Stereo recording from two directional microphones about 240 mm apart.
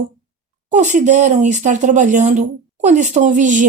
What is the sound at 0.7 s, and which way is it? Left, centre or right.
Speech, right.